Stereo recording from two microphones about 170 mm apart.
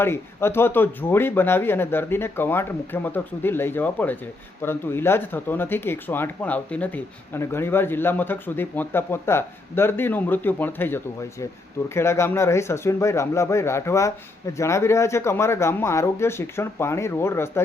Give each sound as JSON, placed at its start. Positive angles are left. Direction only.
{"t": 0.0, "sound": "speech", "side_deg": 15}